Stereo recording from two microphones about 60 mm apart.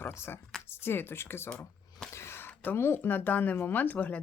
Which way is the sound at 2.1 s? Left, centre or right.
Left.